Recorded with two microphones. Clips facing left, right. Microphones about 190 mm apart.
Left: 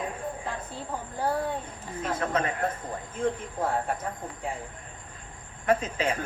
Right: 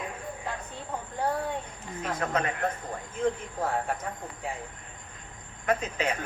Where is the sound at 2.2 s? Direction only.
35° left (ahead or behind).